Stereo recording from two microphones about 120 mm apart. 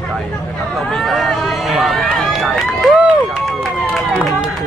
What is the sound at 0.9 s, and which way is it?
Run, centre (ahead or behind).